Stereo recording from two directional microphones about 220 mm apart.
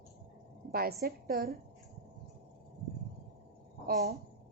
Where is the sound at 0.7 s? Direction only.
45° right (ahead or behind).